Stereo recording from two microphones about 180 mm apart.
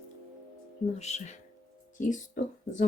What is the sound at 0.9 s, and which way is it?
Speech, 35° left (ahead or behind).